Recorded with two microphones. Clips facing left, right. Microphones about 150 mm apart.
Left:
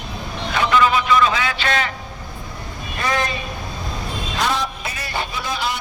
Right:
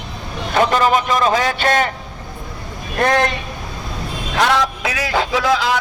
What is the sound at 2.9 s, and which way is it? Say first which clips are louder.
Speech: right 6 dB; 60° right (ahead or behind).